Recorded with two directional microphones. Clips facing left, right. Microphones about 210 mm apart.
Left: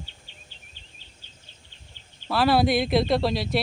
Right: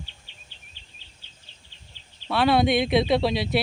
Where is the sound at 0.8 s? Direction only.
45° left (ahead or behind).